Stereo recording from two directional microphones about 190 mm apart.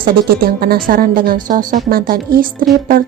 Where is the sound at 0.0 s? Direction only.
50° right (ahead or behind).